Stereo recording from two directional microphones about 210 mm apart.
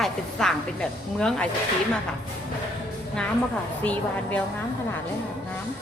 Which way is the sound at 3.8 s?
5° left (ahead or behind).